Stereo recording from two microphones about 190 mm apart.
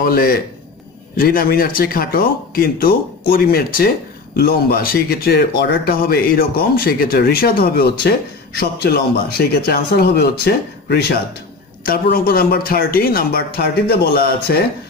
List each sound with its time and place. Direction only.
0.0 s speech: 50° left (ahead or behind)